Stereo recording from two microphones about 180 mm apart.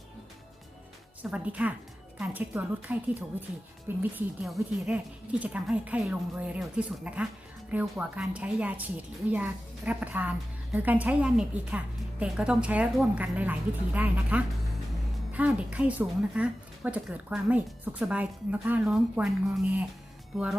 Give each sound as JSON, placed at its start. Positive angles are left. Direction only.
{"t": 1.2, "sound": "a woman's voice", "side_deg": -5}